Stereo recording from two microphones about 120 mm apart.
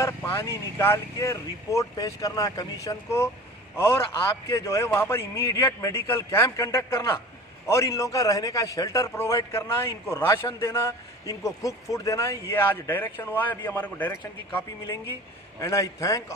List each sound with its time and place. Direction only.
0.0 s a man's voice: 25° left (ahead or behind)
15.6 s a man's voice: 25° left (ahead or behind)